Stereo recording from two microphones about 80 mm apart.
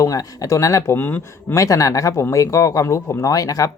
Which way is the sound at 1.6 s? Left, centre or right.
Left.